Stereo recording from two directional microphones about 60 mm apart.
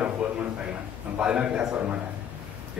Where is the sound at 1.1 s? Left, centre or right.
Centre.